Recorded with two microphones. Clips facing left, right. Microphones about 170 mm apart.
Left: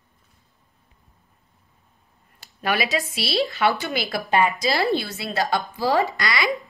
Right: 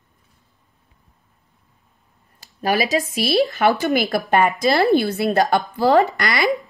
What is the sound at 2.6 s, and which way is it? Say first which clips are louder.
A woman's voice: right 4 dB; 40° right (ahead or behind).